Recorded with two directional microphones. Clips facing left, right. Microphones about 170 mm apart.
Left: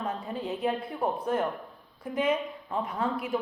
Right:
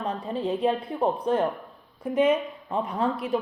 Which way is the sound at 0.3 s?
30° right (ahead or behind).